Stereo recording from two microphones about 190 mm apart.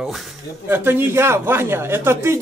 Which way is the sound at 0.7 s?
10° right (ahead or behind).